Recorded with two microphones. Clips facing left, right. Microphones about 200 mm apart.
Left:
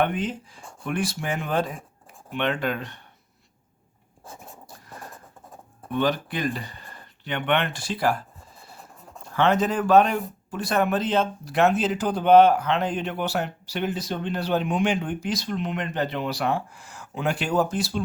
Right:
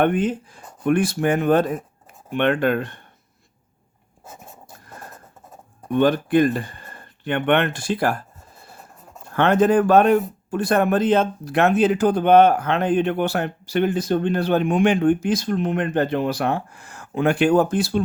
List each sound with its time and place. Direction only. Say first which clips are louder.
0.0 s speech: right 6 dB; 50° right (ahead or behind)
5.9 s speech: right 8 dB; 50° right (ahead or behind)
9.3 s speech: right 6 dB; 55° right (ahead or behind)